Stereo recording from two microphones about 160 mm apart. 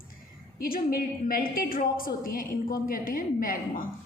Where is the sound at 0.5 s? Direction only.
65° left (ahead or behind).